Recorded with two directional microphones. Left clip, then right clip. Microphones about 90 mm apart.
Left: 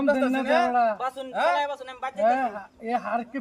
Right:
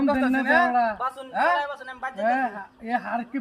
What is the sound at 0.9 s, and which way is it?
Speech, 25° left (ahead or behind).